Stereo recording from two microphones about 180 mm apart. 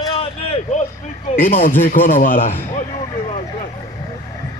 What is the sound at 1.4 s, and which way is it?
Speech, 50° left (ahead or behind).